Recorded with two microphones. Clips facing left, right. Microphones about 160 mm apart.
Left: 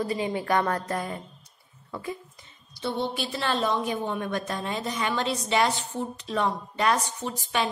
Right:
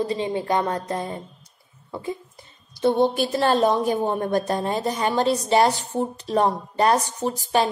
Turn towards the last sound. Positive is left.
turn(degrees=-40)  # may be behind; listen again after turning